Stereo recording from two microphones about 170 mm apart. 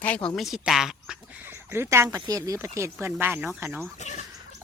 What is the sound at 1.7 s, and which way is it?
Speech, 15° right (ahead or behind).